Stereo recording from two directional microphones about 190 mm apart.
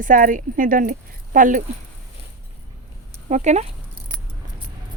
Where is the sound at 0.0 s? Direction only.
45° right (ahead or behind).